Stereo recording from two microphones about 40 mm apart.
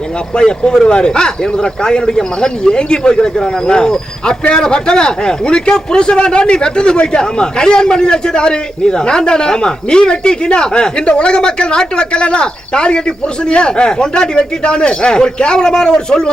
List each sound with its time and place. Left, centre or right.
0.3 s a man's voice: left